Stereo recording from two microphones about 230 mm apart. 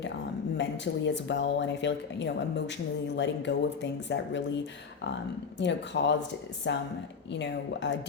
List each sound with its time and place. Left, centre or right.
0.5 s speech: left
5.5 s speech: left